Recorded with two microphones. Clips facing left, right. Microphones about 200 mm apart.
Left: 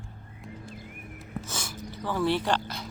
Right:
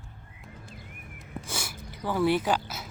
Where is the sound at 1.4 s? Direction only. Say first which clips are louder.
Left 1 dB; 10° right (ahead or behind).